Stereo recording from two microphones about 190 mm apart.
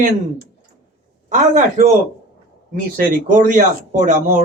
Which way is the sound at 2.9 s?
45° right (ahead or behind).